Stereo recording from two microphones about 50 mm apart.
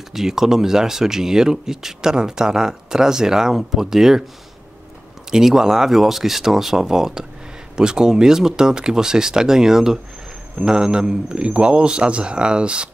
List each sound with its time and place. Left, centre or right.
0.1 s speech: centre
5.3 s a man's voice: centre